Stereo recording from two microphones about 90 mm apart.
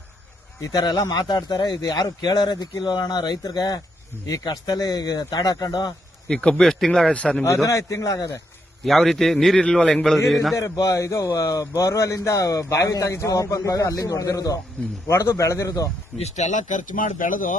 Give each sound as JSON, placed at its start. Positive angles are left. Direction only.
{"t": 0.6, "sound": "speech", "side_deg": 45}
{"t": 6.2, "sound": "a man's voice", "side_deg": 10}
{"t": 7.4, "sound": "speech", "side_deg": 35}
{"t": 8.8, "sound": "a man's voice", "side_deg": 0}
{"t": 10.5, "sound": "speech", "side_deg": 40}
{"t": 16.1, "sound": "a man's voice", "side_deg": -5}